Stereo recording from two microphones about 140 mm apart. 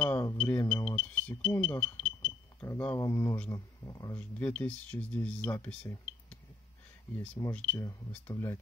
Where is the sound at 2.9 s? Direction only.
20° left (ahead or behind).